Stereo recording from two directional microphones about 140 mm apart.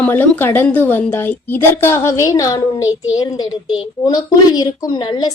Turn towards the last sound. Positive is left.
turn(degrees=35)  # may be behind; listen again after turning